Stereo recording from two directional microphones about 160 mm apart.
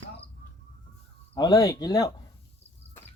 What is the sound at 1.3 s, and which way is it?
Speech, 25° left (ahead or behind).